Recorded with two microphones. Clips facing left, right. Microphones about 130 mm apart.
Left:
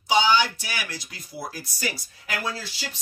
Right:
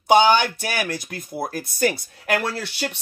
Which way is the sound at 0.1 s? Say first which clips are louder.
Right 5 dB; 55° right (ahead or behind).